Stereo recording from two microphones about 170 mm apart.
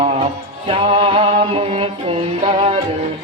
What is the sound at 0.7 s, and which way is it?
Music, 35° right (ahead or behind).